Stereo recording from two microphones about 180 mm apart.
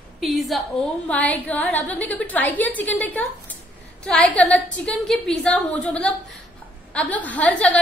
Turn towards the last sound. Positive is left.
turn(degrees=5)  # may be behind; listen again after turning